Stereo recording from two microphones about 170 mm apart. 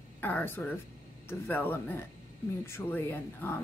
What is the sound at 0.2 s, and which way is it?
A woman's voice, 10° left (ahead or behind).